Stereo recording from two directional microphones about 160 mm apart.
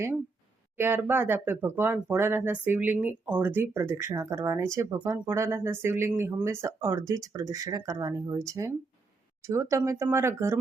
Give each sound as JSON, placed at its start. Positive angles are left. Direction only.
{"t": 0.8, "sound": "speech", "side_deg": -15}